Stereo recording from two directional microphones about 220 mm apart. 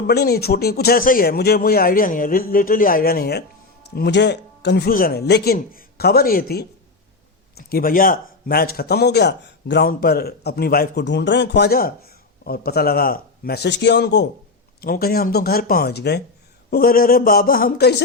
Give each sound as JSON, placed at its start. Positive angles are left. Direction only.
{"t": 0.1, "sound": "a man's voice", "side_deg": 45}